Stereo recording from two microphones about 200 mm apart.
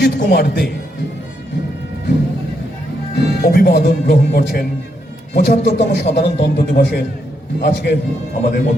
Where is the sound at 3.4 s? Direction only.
50° left (ahead or behind).